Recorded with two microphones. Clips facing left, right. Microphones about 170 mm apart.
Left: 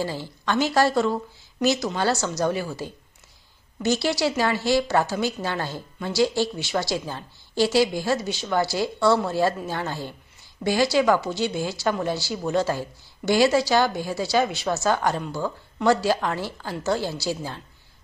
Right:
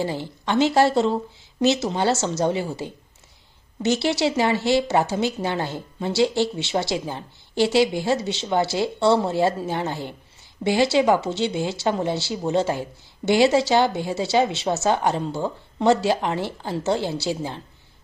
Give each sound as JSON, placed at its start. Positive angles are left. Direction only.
{"t": 0.0, "sound": "a woman's voice", "side_deg": -20}